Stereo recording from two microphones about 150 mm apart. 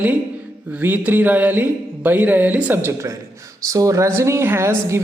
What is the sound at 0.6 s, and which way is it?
Speech, 10° right (ahead or behind).